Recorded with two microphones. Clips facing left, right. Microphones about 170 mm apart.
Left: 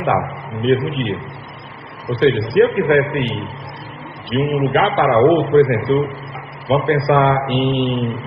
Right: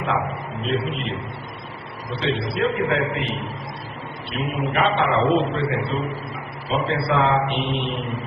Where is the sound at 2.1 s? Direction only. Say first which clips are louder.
Left 10 dB; 60° left (ahead or behind).